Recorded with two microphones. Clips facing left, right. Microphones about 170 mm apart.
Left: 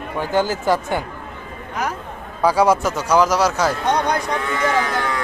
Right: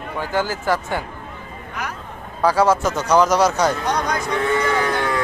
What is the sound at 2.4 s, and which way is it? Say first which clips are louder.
Speech: left 1 dB; 10° left (ahead or behind).